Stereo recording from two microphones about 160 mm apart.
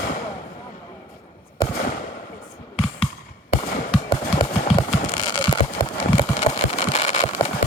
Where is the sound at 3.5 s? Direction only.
35° left (ahead or behind).